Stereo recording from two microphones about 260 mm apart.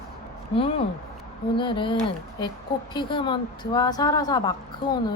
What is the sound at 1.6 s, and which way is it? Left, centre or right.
Speech, centre.